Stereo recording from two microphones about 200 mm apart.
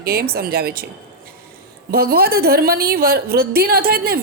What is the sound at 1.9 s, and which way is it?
A woman's voice, 50° right (ahead or behind).